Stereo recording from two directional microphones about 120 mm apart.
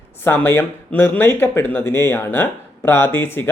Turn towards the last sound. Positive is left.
turn(degrees=20)  # may be behind; listen again after turning